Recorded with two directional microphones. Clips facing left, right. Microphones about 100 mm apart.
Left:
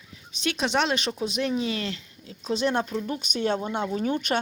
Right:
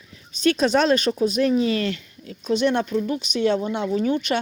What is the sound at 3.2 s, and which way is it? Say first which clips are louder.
Speech: right 5 dB; 45° left (ahead or behind).